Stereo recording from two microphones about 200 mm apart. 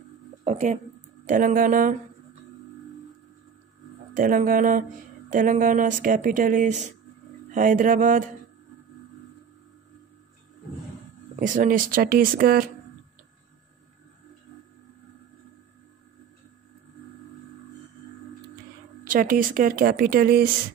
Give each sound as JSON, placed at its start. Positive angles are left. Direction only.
{"t": 0.5, "sound": "a sound", "side_deg": -35}
{"t": 1.2, "sound": "speech", "side_deg": -40}
{"t": 4.1, "sound": "speech", "side_deg": -45}
{"t": 11.3, "sound": "speech", "side_deg": -40}
{"t": 19.0, "sound": "speech", "side_deg": -45}